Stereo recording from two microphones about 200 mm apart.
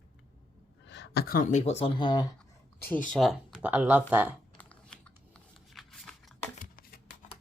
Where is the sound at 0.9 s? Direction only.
55° left (ahead or behind); by 2.2 s 20° left (ahead or behind).